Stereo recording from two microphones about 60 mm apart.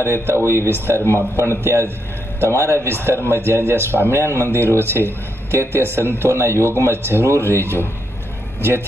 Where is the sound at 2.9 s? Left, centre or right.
Right.